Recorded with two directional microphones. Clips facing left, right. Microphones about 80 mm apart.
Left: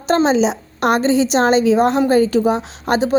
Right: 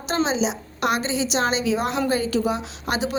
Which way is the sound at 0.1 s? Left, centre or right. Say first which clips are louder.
Left 8 dB; left.